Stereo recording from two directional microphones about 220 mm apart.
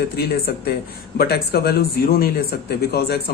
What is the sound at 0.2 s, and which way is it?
Speech, 45° left (ahead or behind).